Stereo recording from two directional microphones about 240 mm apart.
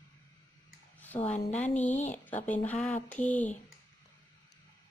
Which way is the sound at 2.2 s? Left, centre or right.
Centre.